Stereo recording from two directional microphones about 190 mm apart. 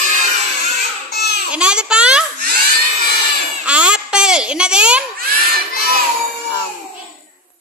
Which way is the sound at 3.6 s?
5° right (ahead or behind).